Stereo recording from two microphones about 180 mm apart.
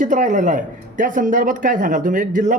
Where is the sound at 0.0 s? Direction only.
45° right (ahead or behind).